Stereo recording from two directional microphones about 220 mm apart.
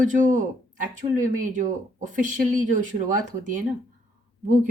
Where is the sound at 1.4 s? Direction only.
35° right (ahead or behind).